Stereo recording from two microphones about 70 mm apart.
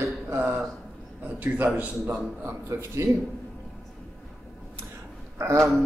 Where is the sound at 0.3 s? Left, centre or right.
Right.